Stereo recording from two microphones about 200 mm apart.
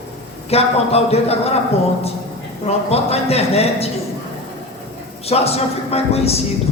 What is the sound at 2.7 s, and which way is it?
A man's voice, 30° left (ahead or behind).